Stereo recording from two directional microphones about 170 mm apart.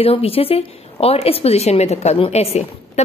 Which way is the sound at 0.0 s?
35° left (ahead or behind).